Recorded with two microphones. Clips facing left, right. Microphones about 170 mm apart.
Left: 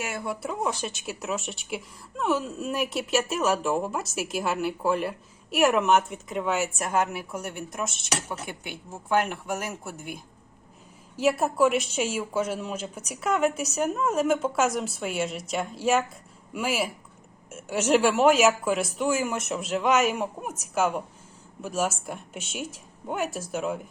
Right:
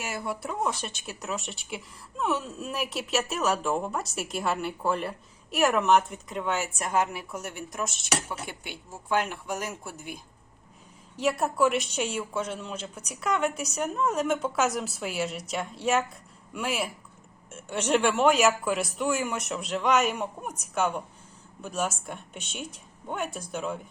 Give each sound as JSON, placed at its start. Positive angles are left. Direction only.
{"t": 0.0, "sound": "speech", "side_deg": 0}
{"t": 11.2, "sound": "speech", "side_deg": 5}